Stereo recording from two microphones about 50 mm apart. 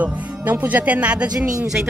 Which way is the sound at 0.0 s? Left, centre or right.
Right.